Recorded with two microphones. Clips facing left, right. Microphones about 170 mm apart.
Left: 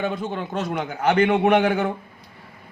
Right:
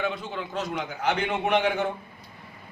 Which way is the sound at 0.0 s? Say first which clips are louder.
Left 4 dB; 50° left (ahead or behind).